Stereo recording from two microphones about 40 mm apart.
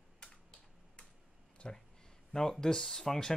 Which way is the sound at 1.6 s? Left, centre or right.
Left.